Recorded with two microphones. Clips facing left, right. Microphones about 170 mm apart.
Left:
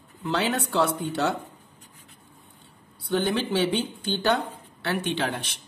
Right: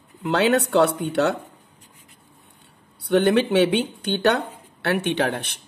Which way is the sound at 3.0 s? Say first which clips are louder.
Right 7 dB; 65° right (ahead or behind).